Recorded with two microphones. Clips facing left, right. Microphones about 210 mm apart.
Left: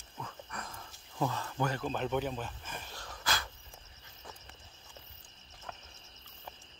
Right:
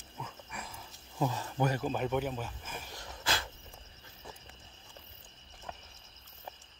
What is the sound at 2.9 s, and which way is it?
Dog, 25° right (ahead or behind).